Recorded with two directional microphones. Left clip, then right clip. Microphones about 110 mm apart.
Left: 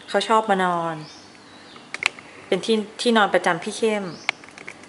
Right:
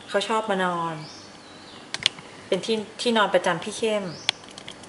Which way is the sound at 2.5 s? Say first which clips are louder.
Left 3 dB; 20° left (ahead or behind).